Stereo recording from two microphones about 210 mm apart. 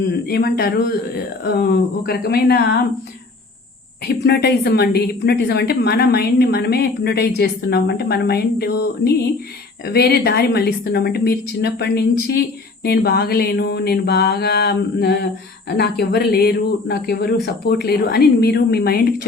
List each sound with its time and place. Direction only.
0.1 s a woman's voice: 50° left (ahead or behind)
4.0 s a woman's voice: 50° left (ahead or behind)